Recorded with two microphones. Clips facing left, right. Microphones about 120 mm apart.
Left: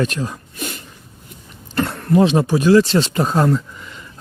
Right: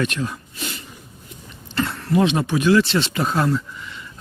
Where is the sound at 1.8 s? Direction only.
45° left (ahead or behind).